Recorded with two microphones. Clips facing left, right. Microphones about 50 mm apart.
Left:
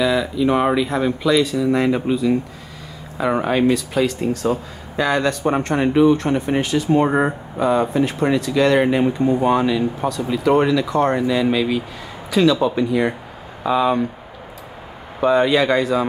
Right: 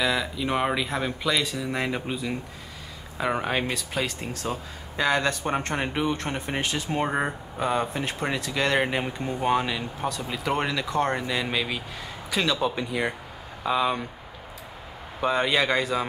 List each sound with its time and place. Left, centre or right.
0.0 s speech: centre
7.1 s speech: centre
15.2 s speech: centre